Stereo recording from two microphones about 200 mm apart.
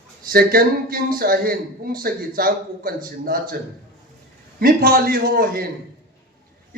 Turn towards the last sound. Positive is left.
turn(degrees=-50)  # may be behind; listen again after turning